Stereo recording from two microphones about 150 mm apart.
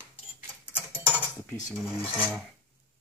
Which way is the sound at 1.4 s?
20° left (ahead or behind).